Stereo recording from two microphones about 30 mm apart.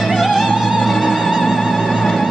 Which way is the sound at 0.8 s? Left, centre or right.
Centre.